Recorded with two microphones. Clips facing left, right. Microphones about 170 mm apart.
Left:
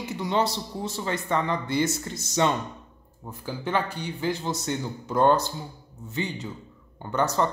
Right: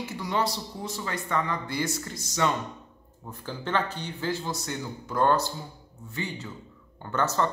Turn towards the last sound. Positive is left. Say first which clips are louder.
# left 2 dB
turn(degrees=15)  # may be behind; listen again after turning